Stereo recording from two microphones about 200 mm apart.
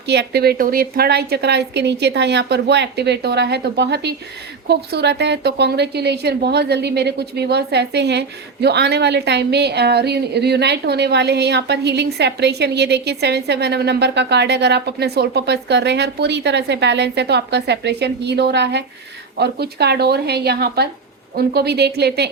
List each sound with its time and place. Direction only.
0.1 s a woman's voice: 55° right (ahead or behind)